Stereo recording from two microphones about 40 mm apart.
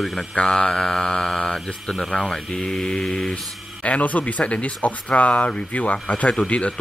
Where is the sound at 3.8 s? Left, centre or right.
Left.